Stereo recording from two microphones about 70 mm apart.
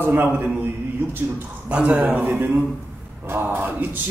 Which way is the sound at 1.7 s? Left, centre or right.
Centre.